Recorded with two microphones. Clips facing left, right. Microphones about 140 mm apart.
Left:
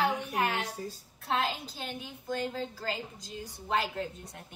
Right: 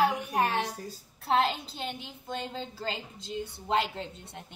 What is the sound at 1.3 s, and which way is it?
A woman's voice, 30° right (ahead or behind).